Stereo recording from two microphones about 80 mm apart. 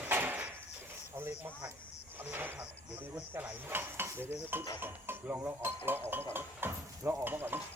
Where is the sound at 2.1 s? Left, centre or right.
Right.